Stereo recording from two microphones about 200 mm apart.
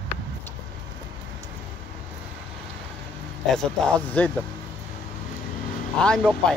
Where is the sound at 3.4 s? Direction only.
5° left (ahead or behind).